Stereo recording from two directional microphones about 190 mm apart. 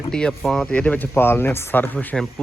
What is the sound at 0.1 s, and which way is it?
Speech, 5° left (ahead or behind).